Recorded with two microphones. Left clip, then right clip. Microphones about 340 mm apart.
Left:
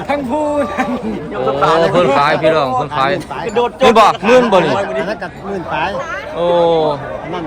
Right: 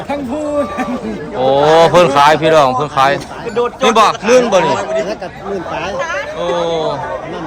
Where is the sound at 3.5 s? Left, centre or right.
Left.